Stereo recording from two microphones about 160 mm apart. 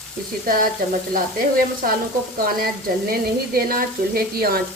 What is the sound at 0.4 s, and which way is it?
Speech, 60° right (ahead or behind).